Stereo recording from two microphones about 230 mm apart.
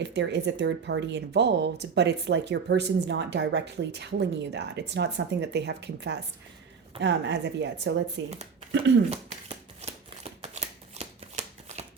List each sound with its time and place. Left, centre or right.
0.0 s speech: right
9.0 s shuffling cards: right